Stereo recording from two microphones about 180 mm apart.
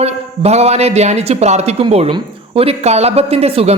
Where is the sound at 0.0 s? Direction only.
35° right (ahead or behind).